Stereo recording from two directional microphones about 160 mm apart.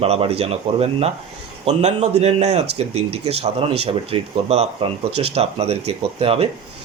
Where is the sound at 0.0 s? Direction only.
40° right (ahead or behind).